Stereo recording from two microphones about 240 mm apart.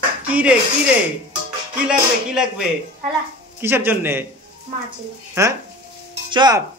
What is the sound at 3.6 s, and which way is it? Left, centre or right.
Speech, centre.